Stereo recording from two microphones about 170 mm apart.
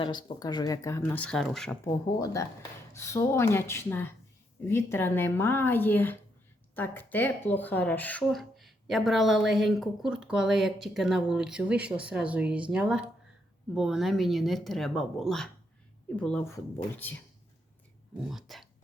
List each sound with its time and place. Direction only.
0.0 s speech: 25° left (ahead or behind); by 1.8 s 5° left (ahead or behind)
1.8 s a woman's voice: 20° left (ahead or behind)
18.3 s speech: centre (ahead or behind)